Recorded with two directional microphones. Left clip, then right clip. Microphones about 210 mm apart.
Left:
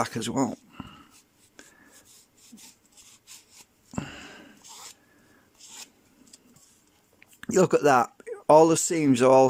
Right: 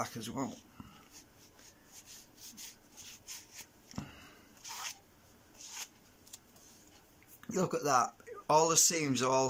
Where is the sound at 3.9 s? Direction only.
45° left (ahead or behind).